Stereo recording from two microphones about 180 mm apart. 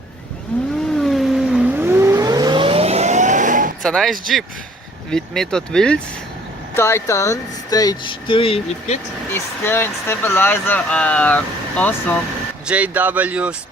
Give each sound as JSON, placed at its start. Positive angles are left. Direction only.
{"t": 0.5, "sound": "vehicle", "side_deg": 5}
{"t": 3.8, "sound": "speech", "side_deg": 0}
{"t": 6.7, "sound": "speech", "side_deg": 15}
{"t": 9.3, "sound": "speech", "side_deg": 10}
{"t": 12.6, "sound": "speech", "side_deg": -5}